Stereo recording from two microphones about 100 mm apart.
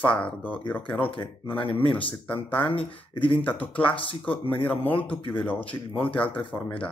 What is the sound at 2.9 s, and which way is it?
Speech, 60° left (ahead or behind).